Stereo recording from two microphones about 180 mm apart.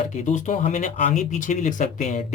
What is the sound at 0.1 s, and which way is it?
Speech, 40° left (ahead or behind).